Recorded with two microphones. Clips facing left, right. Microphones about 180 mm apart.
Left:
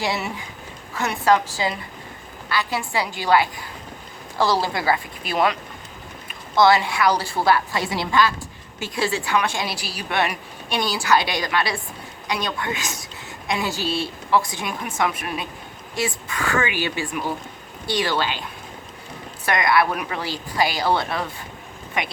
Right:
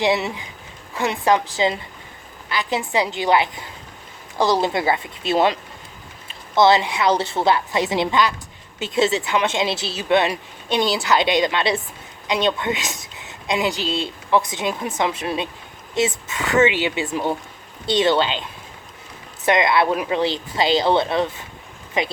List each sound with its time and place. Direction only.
0.0 s a woman's voice: 20° right (ahead or behind)
19.5 s a woman's voice: 20° right (ahead or behind)